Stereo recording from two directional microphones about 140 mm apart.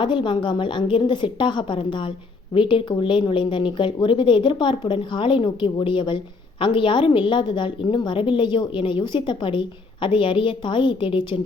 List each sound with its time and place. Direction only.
0.0 s a woman's voice: 35° left (ahead or behind)